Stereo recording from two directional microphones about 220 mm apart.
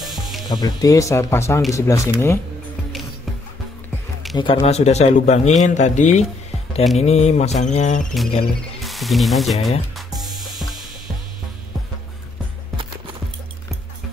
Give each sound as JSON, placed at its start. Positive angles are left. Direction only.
{"t": 0.0, "sound": "music", "side_deg": 0}
{"t": 0.5, "sound": "speech", "side_deg": 20}
{"t": 4.4, "sound": "speech", "side_deg": 25}
{"t": 8.8, "sound": "music", "side_deg": 0}